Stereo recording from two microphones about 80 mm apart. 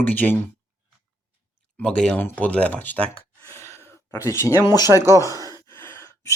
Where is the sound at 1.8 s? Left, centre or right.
Centre.